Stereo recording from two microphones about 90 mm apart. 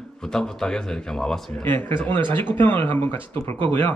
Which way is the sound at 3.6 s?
90° right.